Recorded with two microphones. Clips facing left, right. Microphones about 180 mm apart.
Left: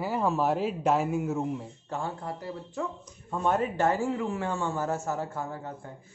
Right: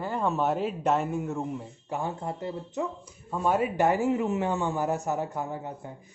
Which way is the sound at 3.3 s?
5° right (ahead or behind).